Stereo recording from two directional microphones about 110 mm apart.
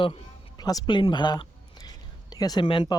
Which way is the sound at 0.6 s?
35° left (ahead or behind).